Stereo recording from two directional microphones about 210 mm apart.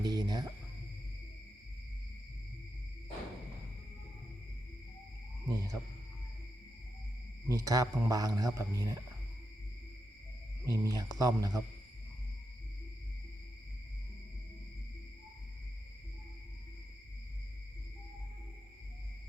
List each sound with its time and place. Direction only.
0.0 s cricket: 20° right (ahead or behind)
5.5 s owl: 15° right (ahead or behind)
7.4 s a man's voice: 15° right (ahead or behind)
10.7 s a man's voice: 15° right (ahead or behind)